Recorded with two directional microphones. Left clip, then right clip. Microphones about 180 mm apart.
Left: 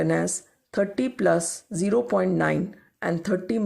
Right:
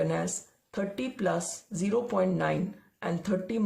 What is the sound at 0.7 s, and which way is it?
Speech, 40° left (ahead or behind).